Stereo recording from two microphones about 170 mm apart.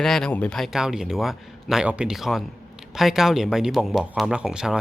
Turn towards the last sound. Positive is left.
turn(degrees=-5)  # may be behind; listen again after turning